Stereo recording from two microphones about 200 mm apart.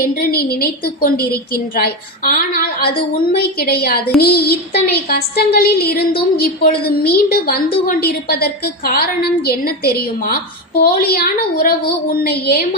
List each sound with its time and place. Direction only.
0.2 s a woman's voice: 50° left (ahead or behind)